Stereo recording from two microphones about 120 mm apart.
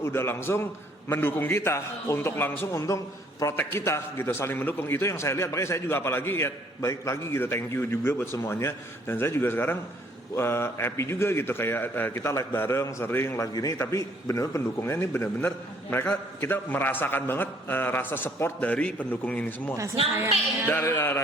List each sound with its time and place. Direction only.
0.0 s a man's voice: 20° left (ahead or behind)